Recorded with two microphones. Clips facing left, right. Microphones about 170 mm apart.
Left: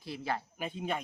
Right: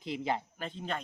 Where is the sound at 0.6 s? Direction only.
10° left (ahead or behind).